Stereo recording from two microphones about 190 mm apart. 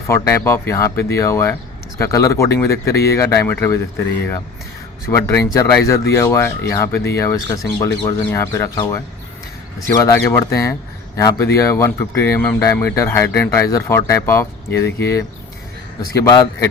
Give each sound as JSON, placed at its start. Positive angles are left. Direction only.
{"t": 0.1, "sound": "speech", "side_deg": 15}
{"t": 5.0, "sound": "speech", "side_deg": 15}
{"t": 10.0, "sound": "a man's voice", "side_deg": 15}